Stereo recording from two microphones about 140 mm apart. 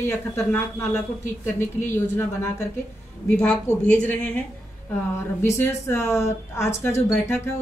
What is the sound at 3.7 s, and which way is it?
Speech, 10° left (ahead or behind).